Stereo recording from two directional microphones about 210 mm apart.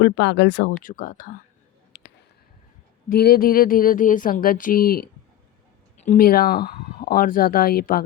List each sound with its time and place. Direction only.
0.0 s speech: 55° left (ahead or behind)
1.9 s a sound: 50° left (ahead or behind)
3.1 s speech: 45° left (ahead or behind)